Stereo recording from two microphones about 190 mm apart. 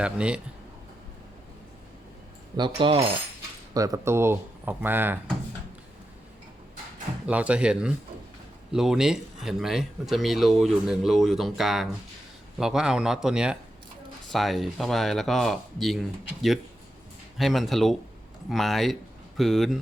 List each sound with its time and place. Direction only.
0.0 s speech: 5° right (ahead or behind)
2.6 s coin: 25° right (ahead or behind)
3.8 s speech: 15° right (ahead or behind)
7.3 s speech: 5° right (ahead or behind)